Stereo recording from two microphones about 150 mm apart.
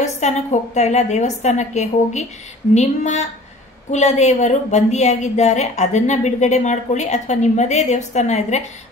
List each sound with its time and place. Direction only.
0.0 s a woman's voice: 50° left (ahead or behind)